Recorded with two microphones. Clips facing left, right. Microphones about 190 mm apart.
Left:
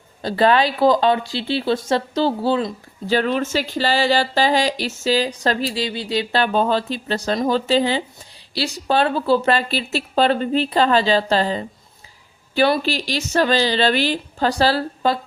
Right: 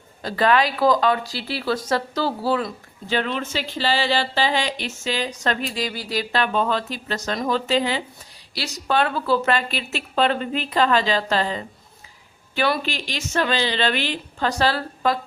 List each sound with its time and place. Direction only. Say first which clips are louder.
0.2 s speech: left 3 dB; 30° left (ahead or behind)
3.1 s speech: left 5 dB; 40° left (ahead or behind)